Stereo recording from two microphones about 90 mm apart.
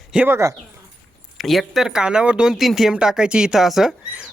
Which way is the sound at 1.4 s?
Centre (ahead or behind).